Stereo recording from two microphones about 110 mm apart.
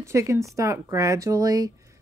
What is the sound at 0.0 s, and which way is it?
Speech, 25° right (ahead or behind).